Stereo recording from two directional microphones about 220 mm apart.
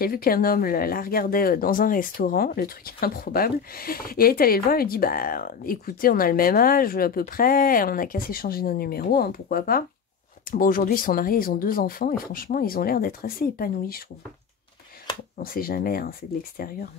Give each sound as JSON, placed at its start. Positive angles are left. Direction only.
{"t": 0.0, "sound": "speech", "side_deg": 40}
{"t": 15.3, "sound": "speech", "side_deg": 40}